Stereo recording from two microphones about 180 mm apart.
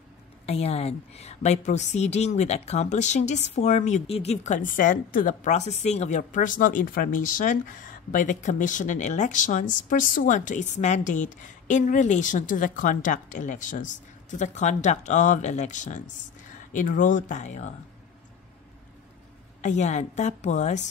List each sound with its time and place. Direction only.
0.5 s a woman's voice: 35° left (ahead or behind)
19.6 s a woman's voice: 40° left (ahead or behind)